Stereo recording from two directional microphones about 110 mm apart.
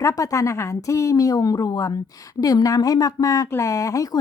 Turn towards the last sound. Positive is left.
turn(degrees=30)  # may be behind; listen again after turning